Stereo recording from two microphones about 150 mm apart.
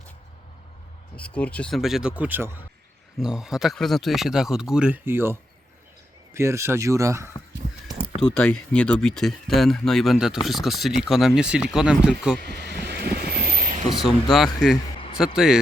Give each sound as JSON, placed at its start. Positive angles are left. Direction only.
{"t": 1.1, "sound": "speech", "side_deg": 10}
{"t": 3.2, "sound": "speech", "side_deg": -5}
{"t": 8.2, "sound": "speech", "side_deg": 5}
{"t": 12.4, "sound": "vehicle", "side_deg": -90}
{"t": 14.3, "sound": "speech", "side_deg": 0}